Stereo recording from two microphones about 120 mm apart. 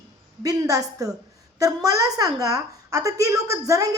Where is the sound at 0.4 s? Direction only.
30° right (ahead or behind).